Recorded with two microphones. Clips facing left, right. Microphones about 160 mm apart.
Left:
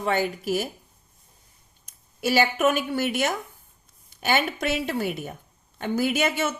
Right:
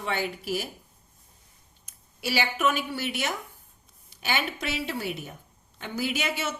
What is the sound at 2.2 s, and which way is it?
Speech, 45° left (ahead or behind).